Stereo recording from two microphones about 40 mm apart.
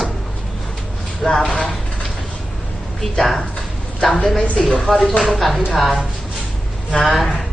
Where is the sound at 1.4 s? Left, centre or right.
Left.